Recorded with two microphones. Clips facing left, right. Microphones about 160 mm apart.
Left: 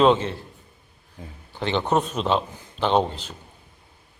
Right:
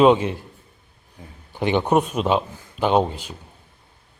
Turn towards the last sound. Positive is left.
turn(degrees=-10)  # may be behind; listen again after turning